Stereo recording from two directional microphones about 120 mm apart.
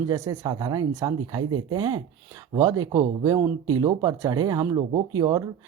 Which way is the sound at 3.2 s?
25° right (ahead or behind).